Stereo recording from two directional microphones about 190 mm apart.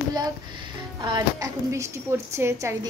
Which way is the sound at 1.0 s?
20° right (ahead or behind).